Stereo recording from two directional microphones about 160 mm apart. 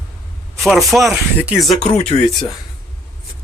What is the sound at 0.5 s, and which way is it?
A man's voice, centre (ahead or behind).